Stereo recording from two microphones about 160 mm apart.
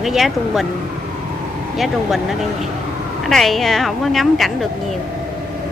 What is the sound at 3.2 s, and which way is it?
Speech, centre (ahead or behind).